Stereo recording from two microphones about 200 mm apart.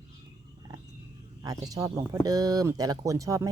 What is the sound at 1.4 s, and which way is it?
Speech, 15° right (ahead or behind).